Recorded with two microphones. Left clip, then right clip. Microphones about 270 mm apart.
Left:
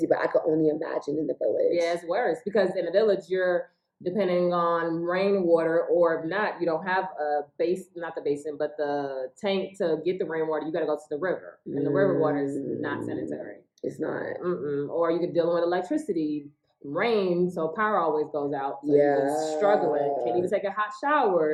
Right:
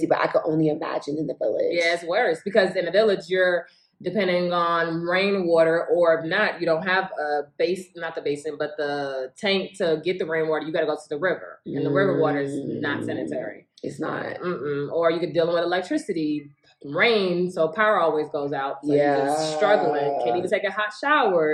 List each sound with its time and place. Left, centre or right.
0.0 s speech: centre
1.7 s speech: centre
14.0 s speech: centre
14.4 s speech: centre
19.0 s speech: centre
19.5 s speech: centre